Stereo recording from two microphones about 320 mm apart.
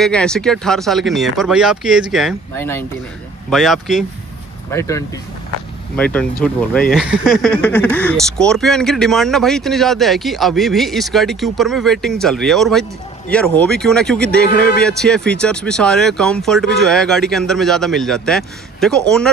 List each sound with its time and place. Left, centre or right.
0.0 s speech: centre
14.5 s a man's voice: left
14.8 s speech: centre